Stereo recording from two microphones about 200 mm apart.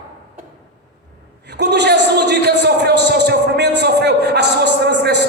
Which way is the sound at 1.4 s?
55° right (ahead or behind).